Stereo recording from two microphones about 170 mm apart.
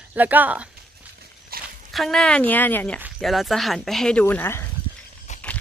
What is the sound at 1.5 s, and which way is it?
Dog, 60° right (ahead or behind).